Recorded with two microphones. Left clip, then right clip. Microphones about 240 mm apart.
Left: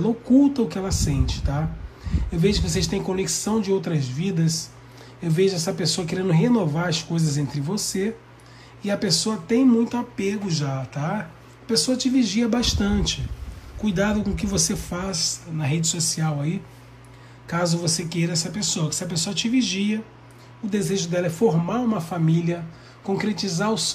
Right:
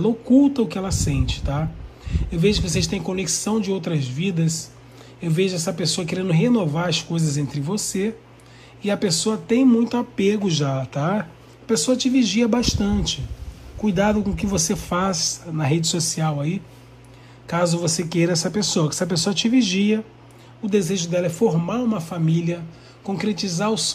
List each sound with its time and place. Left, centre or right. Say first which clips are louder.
0.0 s speech: right 2 dB; centre
9.8 s speech: right 2 dB; centre
10.3 s speech: right 5 dB; right
11.7 s speech: right 2 dB; centre
15.0 s speech: right 5 dB; centre
16.2 s speech: right 3 dB; centre
17.9 s speech: right 5 dB; centre
20.7 s speech: right 3 dB; centre